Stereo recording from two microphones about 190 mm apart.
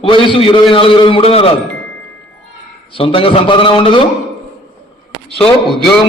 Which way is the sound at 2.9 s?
30° left (ahead or behind).